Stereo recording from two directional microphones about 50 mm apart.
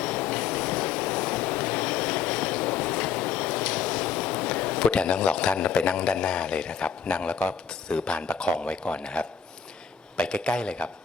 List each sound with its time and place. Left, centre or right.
0.0 s vehicle: centre
10.2 s a man's voice: centre